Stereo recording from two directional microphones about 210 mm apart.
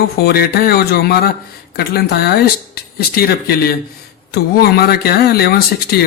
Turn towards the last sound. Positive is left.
turn(degrees=50)  # may be behind; listen again after turning